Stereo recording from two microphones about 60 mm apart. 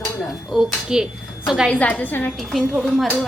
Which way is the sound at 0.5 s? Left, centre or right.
Centre.